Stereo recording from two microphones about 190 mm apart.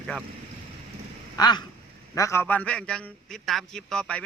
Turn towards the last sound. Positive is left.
turn(degrees=5)  # may be behind; listen again after turning